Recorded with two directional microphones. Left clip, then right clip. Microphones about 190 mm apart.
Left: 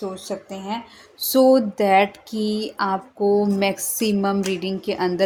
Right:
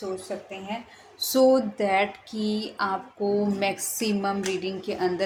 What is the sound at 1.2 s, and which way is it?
Speech, 35° left (ahead or behind).